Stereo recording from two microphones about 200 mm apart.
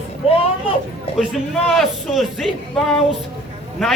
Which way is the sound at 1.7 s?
Centre (ahead or behind).